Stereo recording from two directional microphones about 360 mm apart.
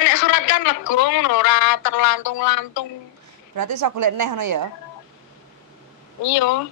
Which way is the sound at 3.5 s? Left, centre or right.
Right.